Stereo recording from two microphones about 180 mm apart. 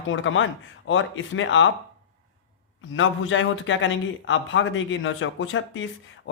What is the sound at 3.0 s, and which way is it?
A man's voice, 90° left.